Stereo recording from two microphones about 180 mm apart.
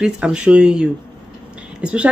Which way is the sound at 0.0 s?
5° right (ahead or behind).